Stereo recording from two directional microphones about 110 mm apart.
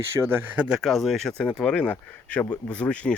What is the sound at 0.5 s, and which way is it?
Speech, 10° right (ahead or behind).